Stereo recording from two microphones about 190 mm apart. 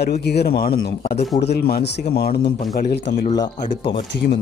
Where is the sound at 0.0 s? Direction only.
60° left (ahead or behind).